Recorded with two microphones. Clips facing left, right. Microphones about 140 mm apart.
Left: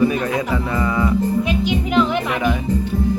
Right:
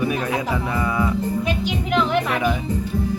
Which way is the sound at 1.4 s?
40° right (ahead or behind).